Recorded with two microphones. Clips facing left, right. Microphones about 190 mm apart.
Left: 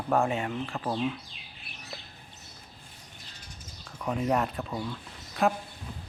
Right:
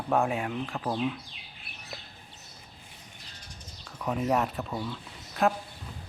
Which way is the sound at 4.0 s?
Centre (ahead or behind).